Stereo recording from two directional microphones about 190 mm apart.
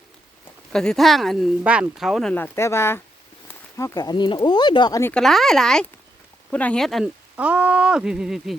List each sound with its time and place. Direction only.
0.7 s speech: 5° left (ahead or behind)
5.1 s speech: centre (ahead or behind)